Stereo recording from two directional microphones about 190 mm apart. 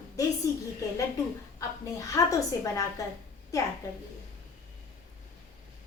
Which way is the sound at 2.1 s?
15° left (ahead or behind).